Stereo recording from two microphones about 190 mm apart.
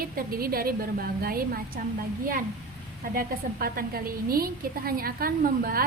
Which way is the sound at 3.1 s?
50° right (ahead or behind).